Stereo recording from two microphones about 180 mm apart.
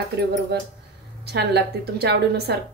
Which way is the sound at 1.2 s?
65° right (ahead or behind).